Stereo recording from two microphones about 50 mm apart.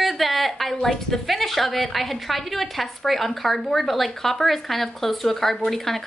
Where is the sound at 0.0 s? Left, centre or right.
Centre.